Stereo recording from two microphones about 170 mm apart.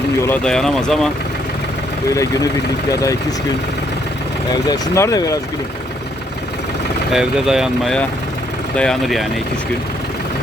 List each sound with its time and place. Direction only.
0.4 s speech: 5° left (ahead or behind)
2.1 s speech: 20° left (ahead or behind)
4.7 s speech: 20° left (ahead or behind)
7.1 s speech: 5° right (ahead or behind)